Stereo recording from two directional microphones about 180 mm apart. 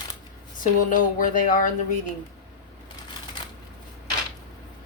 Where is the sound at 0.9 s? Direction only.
50° left (ahead or behind).